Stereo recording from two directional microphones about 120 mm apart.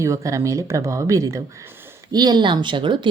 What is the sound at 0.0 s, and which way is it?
Speech, 25° right (ahead or behind).